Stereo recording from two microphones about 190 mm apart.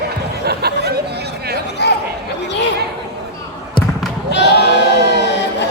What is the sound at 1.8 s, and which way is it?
Chatter, 60° left (ahead or behind).